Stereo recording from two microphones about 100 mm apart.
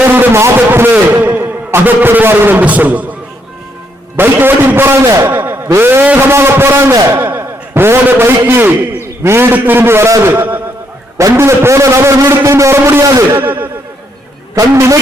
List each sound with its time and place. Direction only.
0.1 s a sound: 25° right (ahead or behind)
1.2 s speech: 20° right (ahead or behind)
4.2 s a man's voice: 20° right (ahead or behind)
7.2 s a sound: 20° right (ahead or behind)
8.4 s a man's voice: 20° right (ahead or behind)
13.3 s a man's voice: 20° right (ahead or behind)
14.5 s speech: 30° right (ahead or behind)